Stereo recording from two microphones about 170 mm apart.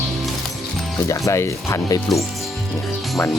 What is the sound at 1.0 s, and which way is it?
Speech, 20° left (ahead or behind).